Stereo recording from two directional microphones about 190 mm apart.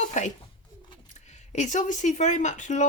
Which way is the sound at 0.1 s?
40° left (ahead or behind).